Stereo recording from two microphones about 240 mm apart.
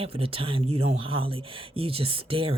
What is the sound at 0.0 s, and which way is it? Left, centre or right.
Speech, right.